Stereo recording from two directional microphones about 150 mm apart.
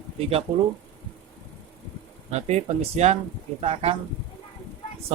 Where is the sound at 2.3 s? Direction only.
45° right (ahead or behind).